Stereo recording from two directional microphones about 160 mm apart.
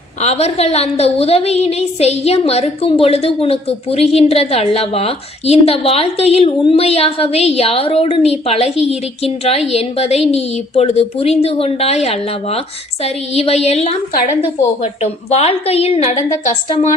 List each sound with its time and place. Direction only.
0.2 s a woman's voice: 40° left (ahead or behind)